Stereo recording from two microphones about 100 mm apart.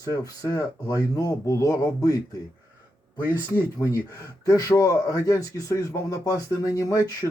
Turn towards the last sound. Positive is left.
turn(degrees=35)  # may be behind; listen again after turning